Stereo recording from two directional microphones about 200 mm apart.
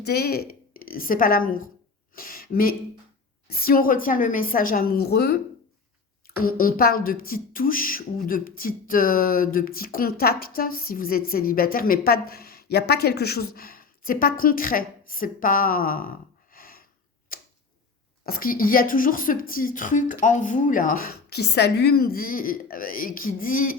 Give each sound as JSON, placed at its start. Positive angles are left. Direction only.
{"t": 0.0, "sound": "a woman's voice", "side_deg": 55}
{"t": 6.4, "sound": "a woman's voice", "side_deg": 45}
{"t": 18.3, "sound": "a woman's voice", "side_deg": 45}